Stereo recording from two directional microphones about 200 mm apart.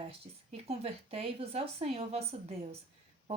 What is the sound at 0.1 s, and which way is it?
A woman's voice, 30° right (ahead or behind).